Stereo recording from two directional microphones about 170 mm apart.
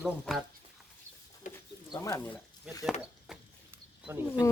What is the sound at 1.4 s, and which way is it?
Bird, 50° left (ahead or behind).